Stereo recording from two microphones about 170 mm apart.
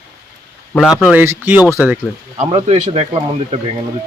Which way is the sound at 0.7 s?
5° left (ahead or behind).